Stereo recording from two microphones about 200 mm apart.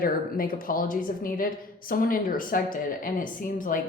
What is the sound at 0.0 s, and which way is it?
A woman's voice, 45° left (ahead or behind).